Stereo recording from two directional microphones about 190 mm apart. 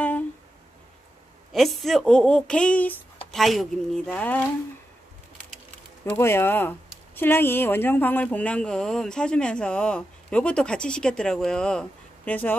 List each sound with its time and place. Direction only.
1.5 s speech: centre (ahead or behind)
6.0 s speech: 15° left (ahead or behind)